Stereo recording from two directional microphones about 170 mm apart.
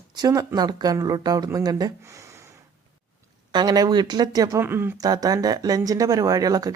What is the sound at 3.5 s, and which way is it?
Speech, 25° right (ahead or behind).